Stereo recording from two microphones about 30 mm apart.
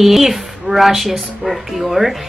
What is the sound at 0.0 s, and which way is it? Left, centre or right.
A woman's voice, centre.